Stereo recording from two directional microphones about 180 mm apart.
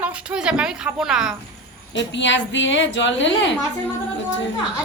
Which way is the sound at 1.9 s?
85° left.